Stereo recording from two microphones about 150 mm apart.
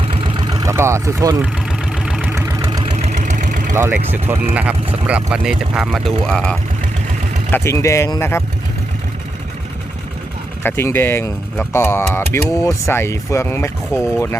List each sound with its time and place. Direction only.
0.2 s vehicle: 25° right (ahead or behind)
2.0 s vehicle: 5° right (ahead or behind)
2.3 s vehicle: 20° right (ahead or behind)
2.9 s vehicle: 50° right (ahead or behind)
3.8 s speech: 15° right (ahead or behind); by 6.6 s 5° left (ahead or behind)
7.5 s speech: 20° left (ahead or behind)
10.6 s speech: 15° left (ahead or behind)